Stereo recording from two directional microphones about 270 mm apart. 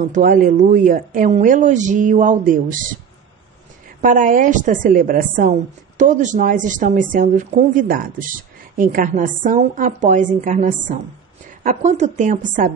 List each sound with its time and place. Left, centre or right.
0.0 s a woman's voice: right
4.0 s a woman's voice: right